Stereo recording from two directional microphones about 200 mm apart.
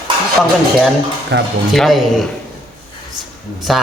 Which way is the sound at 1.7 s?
Centre (ahead or behind).